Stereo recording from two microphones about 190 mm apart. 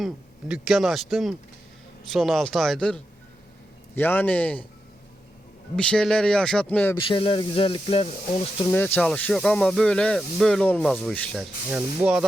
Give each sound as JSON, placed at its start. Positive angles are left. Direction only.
{"t": 0.0, "sound": "a man's voice", "side_deg": -5}
{"t": 5.7, "sound": "speech", "side_deg": 5}
{"t": 6.9, "sound": "speech", "side_deg": 25}
{"t": 8.7, "sound": "speech", "side_deg": 10}
{"t": 11.7, "sound": "speech", "side_deg": -5}